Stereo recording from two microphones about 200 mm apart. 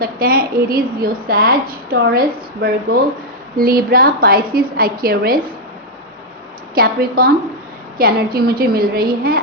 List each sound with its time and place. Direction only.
0.0 s a woman's voice: 50° right (ahead or behind)
6.7 s a woman's voice: 50° right (ahead or behind)